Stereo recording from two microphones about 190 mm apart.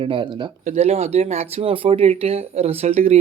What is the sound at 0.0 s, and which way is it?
Speech, 25° right (ahead or behind).